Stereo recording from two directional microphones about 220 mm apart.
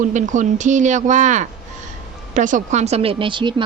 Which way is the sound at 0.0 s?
35° right (ahead or behind).